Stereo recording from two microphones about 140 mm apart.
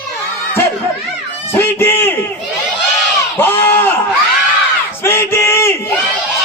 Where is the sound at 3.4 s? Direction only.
15° left (ahead or behind).